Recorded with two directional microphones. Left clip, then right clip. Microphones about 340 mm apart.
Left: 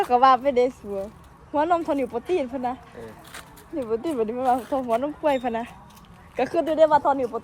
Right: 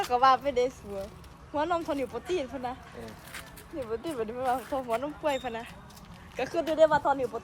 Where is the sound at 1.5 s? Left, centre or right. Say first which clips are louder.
Left 7 dB; left.